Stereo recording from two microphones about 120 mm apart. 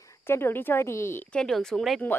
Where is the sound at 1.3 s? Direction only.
5° left (ahead or behind).